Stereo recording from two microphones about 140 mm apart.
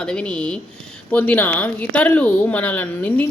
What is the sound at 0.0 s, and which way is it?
Speech, 5° left (ahead or behind).